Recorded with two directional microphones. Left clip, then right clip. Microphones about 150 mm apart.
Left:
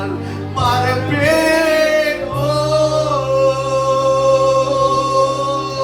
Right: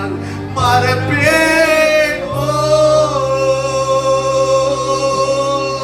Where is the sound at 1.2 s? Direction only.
30° right (ahead or behind).